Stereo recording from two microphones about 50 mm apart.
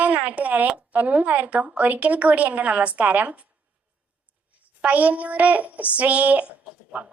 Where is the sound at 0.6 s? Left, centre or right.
Right.